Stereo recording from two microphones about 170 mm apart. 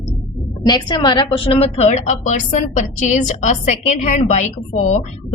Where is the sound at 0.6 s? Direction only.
25° left (ahead or behind).